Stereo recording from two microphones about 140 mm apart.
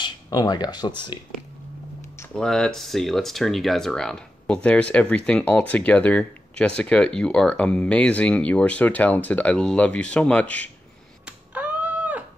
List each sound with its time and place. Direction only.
0.0 s speech: 30° left (ahead or behind)
2.3 s speech: 5° left (ahead or behind)
11.2 s a sound: 10° right (ahead or behind)